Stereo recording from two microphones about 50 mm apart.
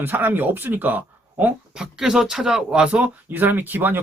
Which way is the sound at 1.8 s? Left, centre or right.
Centre.